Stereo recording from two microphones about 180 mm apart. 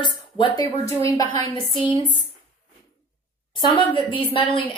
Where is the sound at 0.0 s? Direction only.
25° left (ahead or behind).